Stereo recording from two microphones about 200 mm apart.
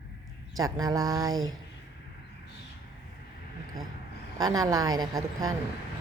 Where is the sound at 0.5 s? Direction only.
20° right (ahead or behind).